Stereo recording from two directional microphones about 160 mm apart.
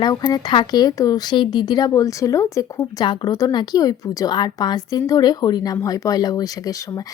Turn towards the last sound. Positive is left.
turn(degrees=20)  # may be behind; listen again after turning